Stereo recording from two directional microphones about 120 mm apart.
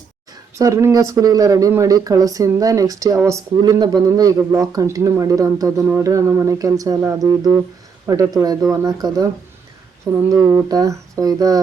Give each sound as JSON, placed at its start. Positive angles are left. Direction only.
{"t": 0.5, "sound": "speech", "side_deg": -25}
{"t": 3.5, "sound": "speech", "side_deg": -40}
{"t": 10.2, "sound": "speech", "side_deg": -30}